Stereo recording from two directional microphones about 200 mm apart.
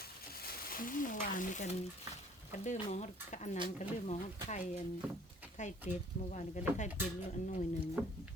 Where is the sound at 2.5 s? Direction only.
35° left (ahead or behind).